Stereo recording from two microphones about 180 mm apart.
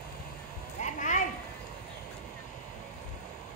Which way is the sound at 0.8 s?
45° left (ahead or behind).